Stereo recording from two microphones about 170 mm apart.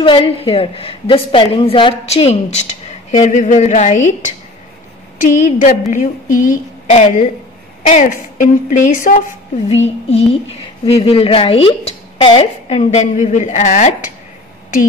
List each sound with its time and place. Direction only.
0.0 s a woman's voice: 30° left (ahead or behind); by 9.2 s 50° left (ahead or behind)
9.7 s a woman's voice: 40° left (ahead or behind)